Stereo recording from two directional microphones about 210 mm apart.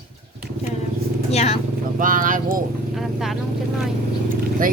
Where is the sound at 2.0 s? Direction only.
40° right (ahead or behind).